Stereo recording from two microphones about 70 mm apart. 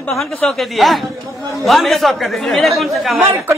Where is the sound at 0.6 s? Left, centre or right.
Centre.